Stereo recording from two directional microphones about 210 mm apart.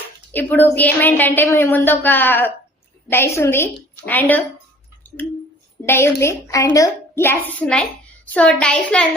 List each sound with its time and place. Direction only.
0.3 s a woman's voice: 10° left (ahead or behind)
5.0 s squish: 10° left (ahead or behind)
5.8 s a woman's voice: 10° left (ahead or behind)